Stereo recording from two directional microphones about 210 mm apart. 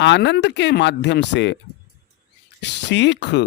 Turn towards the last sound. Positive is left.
turn(degrees=55)  # may be behind; listen again after turning